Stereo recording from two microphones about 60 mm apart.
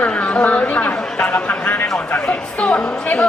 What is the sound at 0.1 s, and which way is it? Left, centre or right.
Chatter, centre.